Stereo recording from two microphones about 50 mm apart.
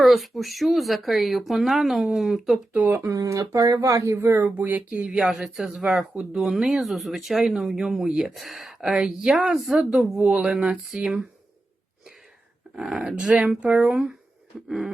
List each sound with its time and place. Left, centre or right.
0.0 s speech: centre
2.7 s speech: right
3.0 s speech: right
4.2 s speech: right
4.4 s speech: right
4.9 s speech: right
12.7 s speech: centre
14.7 s speech: centre